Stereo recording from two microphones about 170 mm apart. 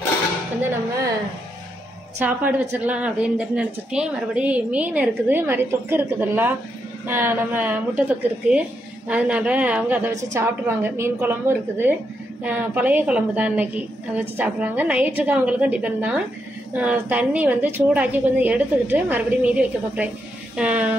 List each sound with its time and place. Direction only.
2.1 s a woman's voice: 10° right (ahead or behind)